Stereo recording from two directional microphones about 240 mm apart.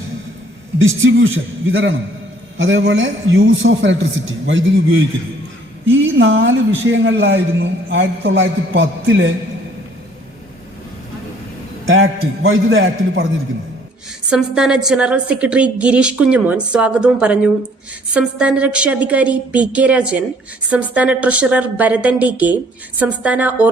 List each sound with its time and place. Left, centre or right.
1.7 s a man's voice: right
11.9 s a man's voice: right
14.3 s a woman's voice: centre